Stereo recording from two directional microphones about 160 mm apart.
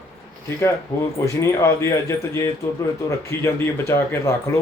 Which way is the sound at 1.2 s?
20° left (ahead or behind).